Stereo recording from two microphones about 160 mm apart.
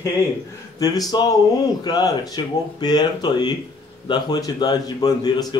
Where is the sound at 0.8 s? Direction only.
25° left (ahead or behind).